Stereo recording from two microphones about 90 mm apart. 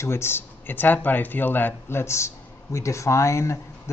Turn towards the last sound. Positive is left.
turn(degrees=35)  # may be behind; listen again after turning